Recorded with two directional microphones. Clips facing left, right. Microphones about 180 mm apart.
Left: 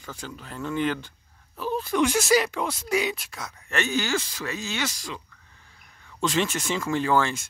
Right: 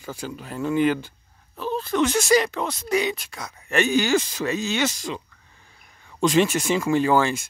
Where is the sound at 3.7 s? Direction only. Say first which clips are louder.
Right 6 dB; 15° right (ahead or behind).